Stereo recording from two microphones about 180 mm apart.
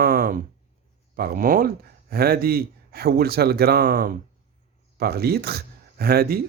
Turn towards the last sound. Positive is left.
turn(degrees=-60)  # may be behind; listen again after turning